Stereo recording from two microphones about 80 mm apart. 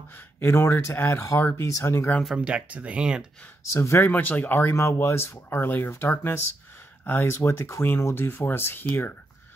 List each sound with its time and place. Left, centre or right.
0.1 s speech: left
2.3 s speech: centre
3.7 s speech: left
4.0 s speech: left
4.6 s speech: left